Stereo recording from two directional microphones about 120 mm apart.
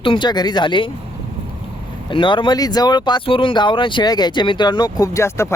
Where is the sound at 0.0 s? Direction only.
45° left (ahead or behind).